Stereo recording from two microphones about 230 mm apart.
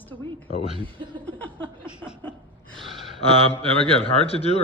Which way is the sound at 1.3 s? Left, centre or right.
Centre.